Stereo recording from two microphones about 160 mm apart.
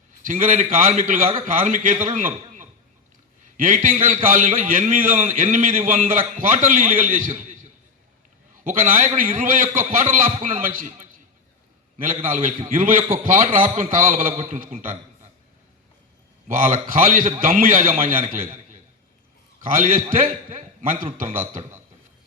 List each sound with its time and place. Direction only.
0.3 s a man's voice: 55° right (ahead or behind)
8.6 s a man's voice: 55° right (ahead or behind)
12.3 s a man's voice: 55° right (ahead or behind)
16.5 s a man's voice: 55° right (ahead or behind)